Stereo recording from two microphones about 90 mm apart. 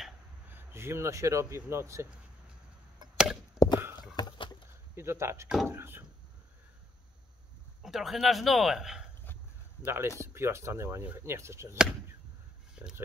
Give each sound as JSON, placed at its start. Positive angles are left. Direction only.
{"t": 0.5, "sound": "speech", "side_deg": -25}
{"t": 3.5, "sound": "a sound", "side_deg": 50}
{"t": 4.2, "sound": "rowboat", "side_deg": 55}
{"t": 4.9, "sound": "speech", "side_deg": -30}
{"t": 7.8, "sound": "speech", "side_deg": 0}
{"t": 9.2, "sound": "dog", "side_deg": 25}
{"t": 9.8, "sound": "speech", "side_deg": -30}